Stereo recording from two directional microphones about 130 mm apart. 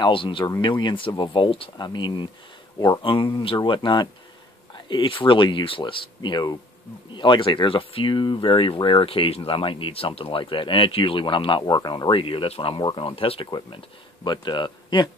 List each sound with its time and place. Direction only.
0.0 s speech: 40° left (ahead or behind)